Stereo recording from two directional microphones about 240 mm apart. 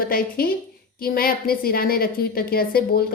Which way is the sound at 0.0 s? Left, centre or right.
Left.